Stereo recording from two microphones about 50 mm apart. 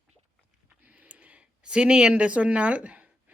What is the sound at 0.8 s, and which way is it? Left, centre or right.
A woman's voice, right.